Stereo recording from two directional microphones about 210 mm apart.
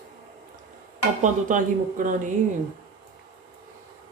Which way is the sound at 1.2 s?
40° right (ahead or behind).